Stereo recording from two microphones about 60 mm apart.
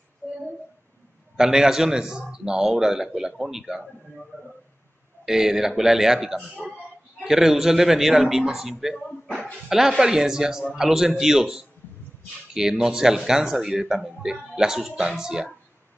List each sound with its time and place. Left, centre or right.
0.2 s a sound: left
1.3 s speech: centre
5.2 s speech: centre